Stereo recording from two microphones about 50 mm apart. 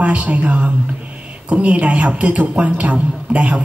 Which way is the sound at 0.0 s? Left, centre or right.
Right.